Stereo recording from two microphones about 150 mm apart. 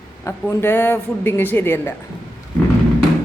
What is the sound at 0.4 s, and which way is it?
A man's voice, 10° left (ahead or behind).